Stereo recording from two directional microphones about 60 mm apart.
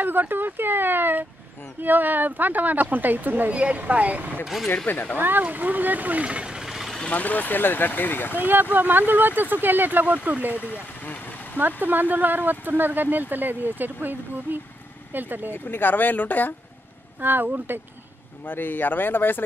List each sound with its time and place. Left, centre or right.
0.0 s speech: right
4.8 s speech: left
5.1 s speech: right
6.6 s vehicle: centre
7.1 s speech: left
8.4 s speech: right
10.6 s speech: left
11.5 s speech: right
15.5 s speech: left
17.2 s speech: right
18.4 s speech: left